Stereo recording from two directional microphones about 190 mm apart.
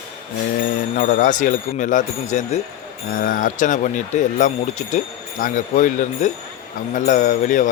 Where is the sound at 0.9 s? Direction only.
45° left (ahead or behind).